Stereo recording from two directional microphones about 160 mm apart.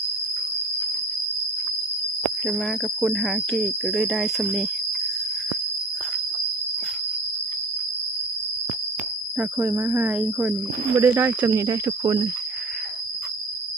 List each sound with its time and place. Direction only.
2.5 s speech: centre (ahead or behind)
9.4 s speech: 15° right (ahead or behind)